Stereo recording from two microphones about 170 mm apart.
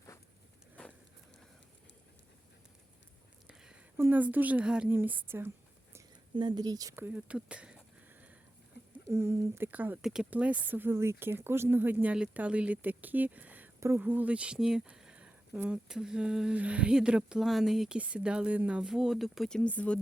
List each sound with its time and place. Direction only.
0.8 s a sound: 10° left (ahead or behind)
3.4 s speech: 5° right (ahead or behind)
6.3 s speech: 25° right (ahead or behind); by 7.8 s 5° right (ahead or behind)
9.0 s speech: 15° right (ahead or behind); by 20.0 s 10° left (ahead or behind)